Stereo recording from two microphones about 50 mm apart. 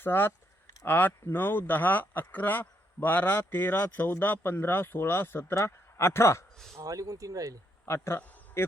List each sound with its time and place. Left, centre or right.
0.0 s a man's voice: left
5.5 s speech: left
7.9 s speech: left
8.6 s speech: left